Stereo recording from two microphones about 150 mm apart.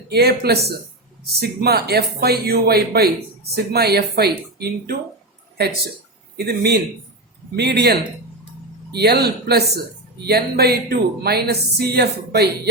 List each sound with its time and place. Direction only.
0.1 s speech: 90° right